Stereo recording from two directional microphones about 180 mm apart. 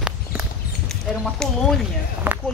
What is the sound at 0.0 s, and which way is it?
Clip-clop, 5° right (ahead or behind).